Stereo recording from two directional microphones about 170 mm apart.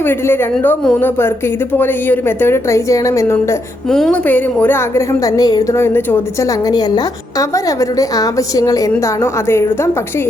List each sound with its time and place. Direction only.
0.0 s a woman's voice: 10° left (ahead or behind)
3.8 s a woman's voice: 5° left (ahead or behind)